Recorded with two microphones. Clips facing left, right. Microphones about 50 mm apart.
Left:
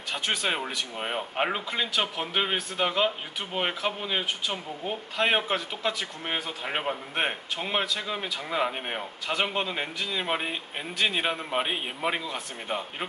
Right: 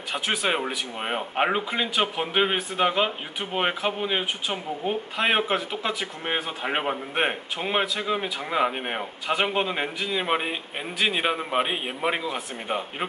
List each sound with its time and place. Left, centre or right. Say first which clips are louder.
0.1 s speech: right 3 dB; centre